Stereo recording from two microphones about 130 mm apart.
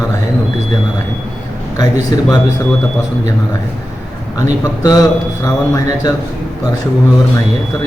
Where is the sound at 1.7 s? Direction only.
30° left (ahead or behind).